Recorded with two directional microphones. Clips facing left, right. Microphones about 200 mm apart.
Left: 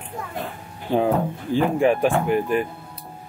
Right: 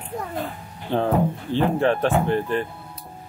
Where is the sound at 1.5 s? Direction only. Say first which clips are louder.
Left 2 dB; 10° left (ahead or behind).